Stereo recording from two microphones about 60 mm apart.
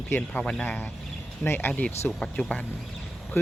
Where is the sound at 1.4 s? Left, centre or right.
Left.